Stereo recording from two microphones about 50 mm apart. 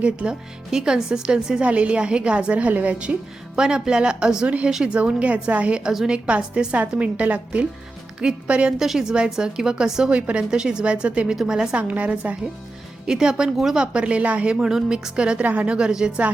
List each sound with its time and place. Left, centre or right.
0.0 s a woman's voice: right
0.7 s a woman's voice: centre
1.6 s a woman's voice: right
3.5 s a woman's voice: centre
4.9 s a woman's voice: right
5.8 s a woman's voice: centre
6.1 s a woman's voice: right
8.8 s a woman's voice: centre
11.3 s a woman's voice: centre
11.8 s a woman's voice: right
13.1 s a woman's voice: centre